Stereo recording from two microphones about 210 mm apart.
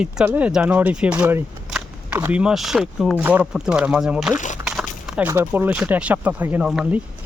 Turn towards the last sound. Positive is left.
turn(degrees=-5)  # may be behind; listen again after turning